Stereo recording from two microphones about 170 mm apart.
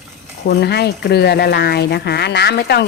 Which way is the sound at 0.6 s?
75° left (ahead or behind).